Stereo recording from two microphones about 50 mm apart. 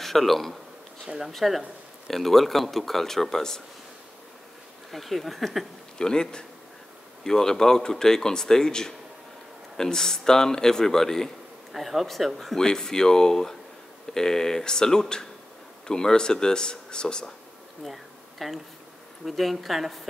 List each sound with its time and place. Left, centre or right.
0.0 s speech: centre
4.9 s speech: centre
5.9 s speech: centre
11.7 s speech: centre
17.8 s a sound: centre
19.2 s speech: centre